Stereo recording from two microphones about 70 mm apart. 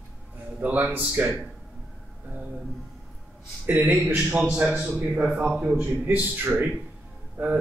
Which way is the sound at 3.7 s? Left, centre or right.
Right.